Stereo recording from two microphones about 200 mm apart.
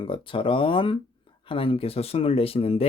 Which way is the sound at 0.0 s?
25° left (ahead or behind).